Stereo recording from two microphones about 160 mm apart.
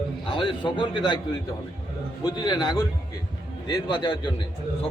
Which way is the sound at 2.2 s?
25° left (ahead or behind).